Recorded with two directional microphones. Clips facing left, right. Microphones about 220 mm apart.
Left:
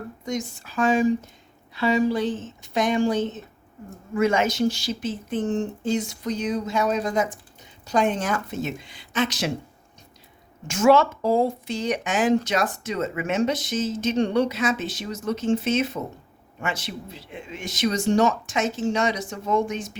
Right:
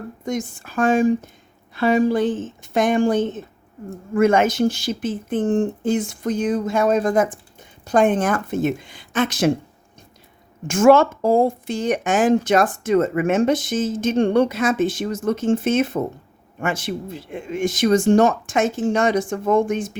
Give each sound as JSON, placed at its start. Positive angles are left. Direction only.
{"t": 0.3, "sound": "speech", "side_deg": -50}
{"t": 10.7, "sound": "speech", "side_deg": -50}